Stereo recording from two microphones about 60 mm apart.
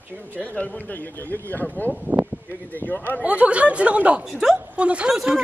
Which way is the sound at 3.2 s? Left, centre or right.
Right.